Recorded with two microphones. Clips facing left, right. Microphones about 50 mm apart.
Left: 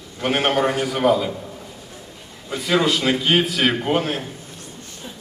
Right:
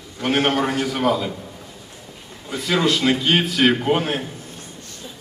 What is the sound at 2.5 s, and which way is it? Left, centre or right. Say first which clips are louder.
A man's voice: left 1 dB; centre.